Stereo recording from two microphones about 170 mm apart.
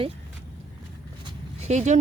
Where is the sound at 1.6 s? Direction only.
40° right (ahead or behind).